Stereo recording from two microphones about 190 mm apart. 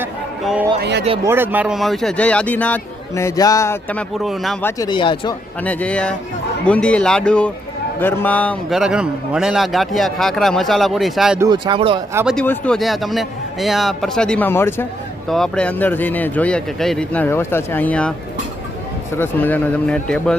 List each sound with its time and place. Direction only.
0.0 s a sound: 10° right (ahead or behind)
0.8 s speech: 60° right (ahead or behind)
1.2 s speech: 10° right (ahead or behind)
4.6 s speech: 20° left (ahead or behind)
5.6 s a man's voice: 5° left (ahead or behind)
11.3 s speech: 20° right (ahead or behind)
12.1 s a man's voice: 5° right (ahead or behind)
19.1 s speech: 10° left (ahead or behind)